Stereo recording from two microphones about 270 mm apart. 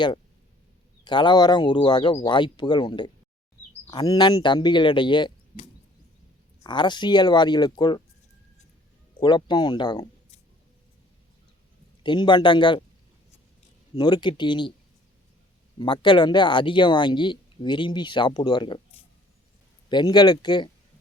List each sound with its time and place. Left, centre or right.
1.0 s speech: centre
9.2 s speech: centre
12.0 s speech: centre
13.9 s speech: centre
15.8 s speech: centre
19.9 s speech: centre